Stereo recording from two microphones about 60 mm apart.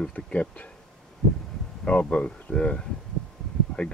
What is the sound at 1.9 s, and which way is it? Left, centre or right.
Speech, left.